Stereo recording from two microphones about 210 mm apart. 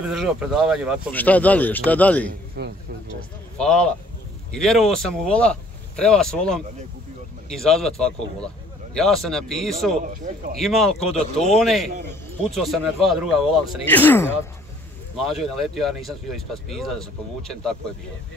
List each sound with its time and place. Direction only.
0.1 s speech: centre (ahead or behind)
2.6 s speech: 50° right (ahead or behind)
3.5 s speech: 5° left (ahead or behind)
10.0 s speech: 40° right (ahead or behind)
10.6 s speech: centre (ahead or behind)
11.1 s speech: 30° left (ahead or behind)
11.5 s speech: centre (ahead or behind)